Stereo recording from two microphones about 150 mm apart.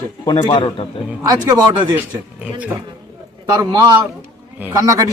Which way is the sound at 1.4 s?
25° right (ahead or behind).